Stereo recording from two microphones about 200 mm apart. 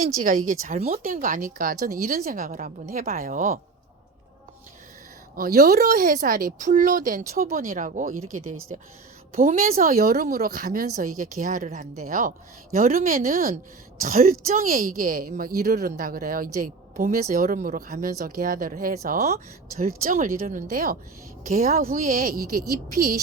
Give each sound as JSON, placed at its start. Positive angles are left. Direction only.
{"t": 0.2, "sound": "speech", "side_deg": -40}
{"t": 1.0, "sound": "speech", "side_deg": -45}
{"t": 5.4, "sound": "speech", "side_deg": -50}
{"t": 8.1, "sound": "speech", "side_deg": -90}
{"t": 9.3, "sound": "speech", "side_deg": -40}